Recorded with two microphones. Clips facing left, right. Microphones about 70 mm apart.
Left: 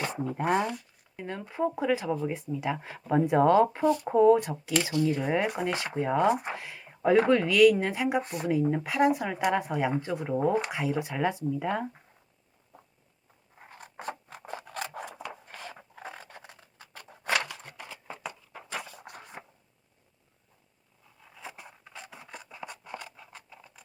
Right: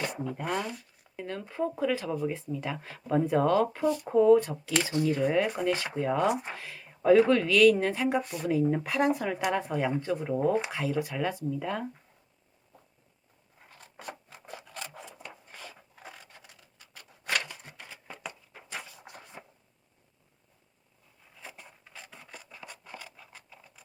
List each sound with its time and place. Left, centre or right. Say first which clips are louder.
0.0 s speech: left 3 dB; left
1.2 s speech: left 2 dB; centre
6.2 s speech: left 2 dB; left
6.5 s speech: left 3 dB; centre
8.2 s speech: left 2 dB; left
8.4 s speech: right 1 dB; centre
13.6 s scissors: left 6 dB; left
15.3 s a sound: left 4 dB; left
17.5 s a sound: left 3 dB; left
19.4 s a sound: left 3 dB; left
21.4 s scissors: left 3 dB; centre
22.4 s scratch: left 5 dB; centre